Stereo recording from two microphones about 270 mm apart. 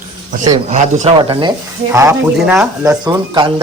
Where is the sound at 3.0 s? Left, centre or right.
Centre.